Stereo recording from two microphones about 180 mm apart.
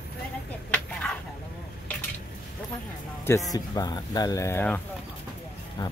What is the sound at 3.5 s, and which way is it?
Speech, 20° left (ahead or behind).